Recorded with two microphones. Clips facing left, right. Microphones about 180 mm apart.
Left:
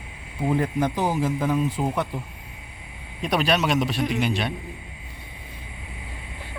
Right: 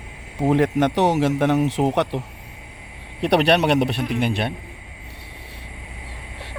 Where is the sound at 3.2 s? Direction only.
65° right (ahead or behind).